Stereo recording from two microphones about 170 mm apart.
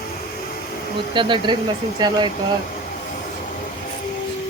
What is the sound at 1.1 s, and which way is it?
Speech, 30° right (ahead or behind).